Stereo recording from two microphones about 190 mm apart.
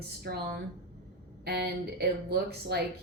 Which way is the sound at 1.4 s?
55° right (ahead or behind).